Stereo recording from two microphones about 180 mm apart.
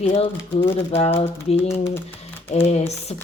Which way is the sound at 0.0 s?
35° left (ahead or behind).